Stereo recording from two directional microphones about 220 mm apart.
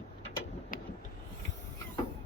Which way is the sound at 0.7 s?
40° left (ahead or behind).